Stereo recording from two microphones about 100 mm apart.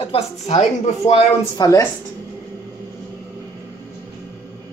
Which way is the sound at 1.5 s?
40° left (ahead or behind).